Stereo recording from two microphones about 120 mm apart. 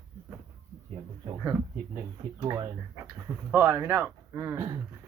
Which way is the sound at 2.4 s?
30° right (ahead or behind).